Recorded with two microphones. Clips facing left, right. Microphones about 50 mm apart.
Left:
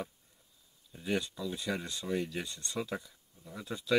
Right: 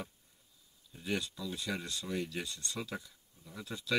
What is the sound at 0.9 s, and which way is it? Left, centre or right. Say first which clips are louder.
Speech: left 3 dB; centre.